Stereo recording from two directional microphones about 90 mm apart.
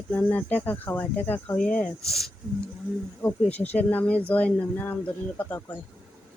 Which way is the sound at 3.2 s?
20° left (ahead or behind).